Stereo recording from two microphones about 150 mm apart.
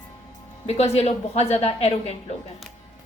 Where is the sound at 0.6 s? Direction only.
45° left (ahead or behind).